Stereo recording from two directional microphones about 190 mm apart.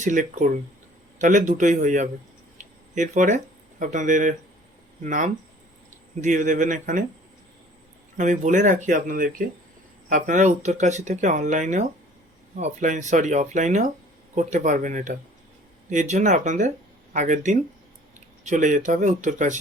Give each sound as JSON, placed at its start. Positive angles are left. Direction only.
{"t": 0.0, "sound": "speech", "side_deg": -40}
{"t": 8.1, "sound": "speech", "side_deg": -40}